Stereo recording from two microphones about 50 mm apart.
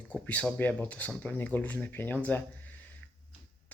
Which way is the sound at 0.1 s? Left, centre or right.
Left.